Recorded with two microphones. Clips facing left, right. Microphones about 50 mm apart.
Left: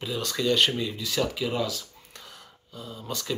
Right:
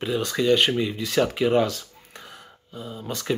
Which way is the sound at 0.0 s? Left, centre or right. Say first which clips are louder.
Right 5 dB; right.